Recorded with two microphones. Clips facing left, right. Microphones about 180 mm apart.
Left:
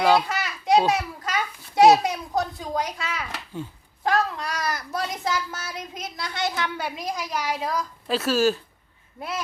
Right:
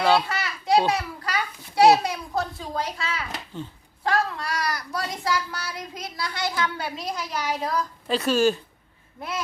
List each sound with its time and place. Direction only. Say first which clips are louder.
0.0 s children playing: left 1 dB; 15° left (ahead or behind)
0.9 s a child's voice: left 1 dB; 20° left (ahead or behind); by 8.5 s centre (ahead or behind)